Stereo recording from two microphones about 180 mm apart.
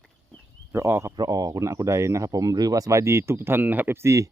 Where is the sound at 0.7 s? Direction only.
15° right (ahead or behind).